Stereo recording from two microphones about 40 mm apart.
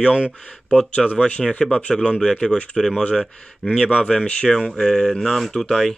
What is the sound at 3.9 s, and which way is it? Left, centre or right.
Speech, left.